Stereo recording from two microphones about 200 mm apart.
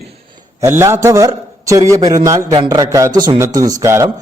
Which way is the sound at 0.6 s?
15° right (ahead or behind).